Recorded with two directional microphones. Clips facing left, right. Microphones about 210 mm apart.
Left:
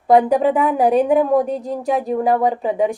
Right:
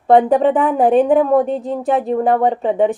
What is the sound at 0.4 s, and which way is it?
A woman's voice, centre (ahead or behind).